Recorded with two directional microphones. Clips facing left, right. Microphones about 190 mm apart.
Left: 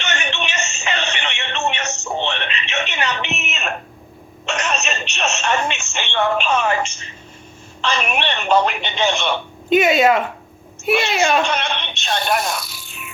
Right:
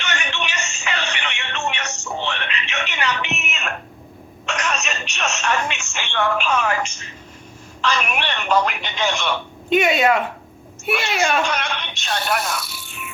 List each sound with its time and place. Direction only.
0.0 s a sound: 25° left (ahead or behind)
4.4 s speech: 25° left (ahead or behind)
9.6 s speech: centre (ahead or behind)
11.4 s speech: 25° left (ahead or behind)